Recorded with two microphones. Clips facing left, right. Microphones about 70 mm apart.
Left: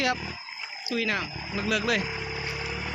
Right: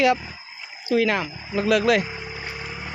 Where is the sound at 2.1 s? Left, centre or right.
Right.